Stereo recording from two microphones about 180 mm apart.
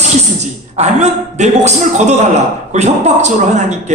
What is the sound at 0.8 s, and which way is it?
A man's voice, 40° right (ahead or behind).